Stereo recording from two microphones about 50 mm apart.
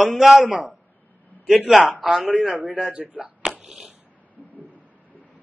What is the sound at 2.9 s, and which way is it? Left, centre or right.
Speech, right.